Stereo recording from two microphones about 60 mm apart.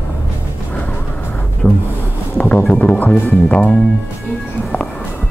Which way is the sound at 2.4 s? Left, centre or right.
Left.